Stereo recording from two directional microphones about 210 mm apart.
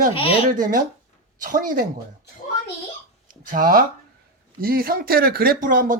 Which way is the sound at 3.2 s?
40° right (ahead or behind).